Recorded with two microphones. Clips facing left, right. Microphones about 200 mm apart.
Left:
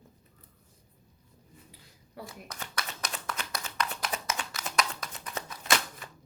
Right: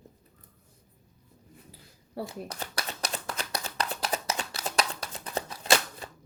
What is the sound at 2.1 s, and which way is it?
Shuffling cards, 30° right (ahead or behind).